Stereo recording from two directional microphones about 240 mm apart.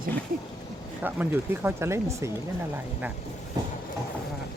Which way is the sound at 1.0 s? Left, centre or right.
Centre.